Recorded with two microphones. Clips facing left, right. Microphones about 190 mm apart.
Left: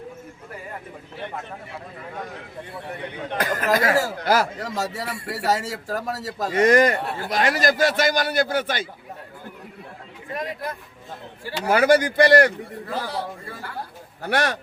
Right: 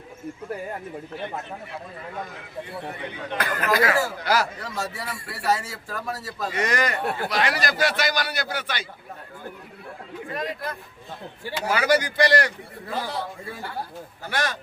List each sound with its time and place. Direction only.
3.3 s a man's voice: 40° left (ahead or behind)
10.3 s speech: 20° left (ahead or behind)
11.6 s a man's voice: 50° left (ahead or behind)
14.2 s speech: 60° left (ahead or behind)